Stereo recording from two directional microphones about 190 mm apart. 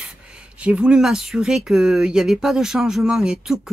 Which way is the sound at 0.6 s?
5° right (ahead or behind).